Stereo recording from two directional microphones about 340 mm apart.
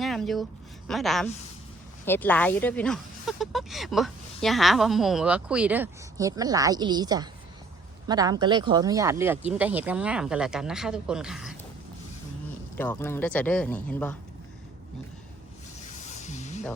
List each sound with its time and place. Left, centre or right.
0.0 s a sound: centre
0.9 s speech: centre
12.7 s speech: centre
16.0 s music: left